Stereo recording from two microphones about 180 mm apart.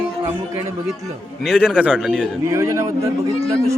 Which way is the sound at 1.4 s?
5° right (ahead or behind).